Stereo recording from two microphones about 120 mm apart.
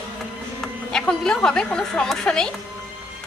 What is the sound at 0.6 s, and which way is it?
A woman's voice, 5° left (ahead or behind).